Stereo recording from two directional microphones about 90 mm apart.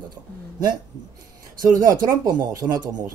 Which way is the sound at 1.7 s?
45° right (ahead or behind).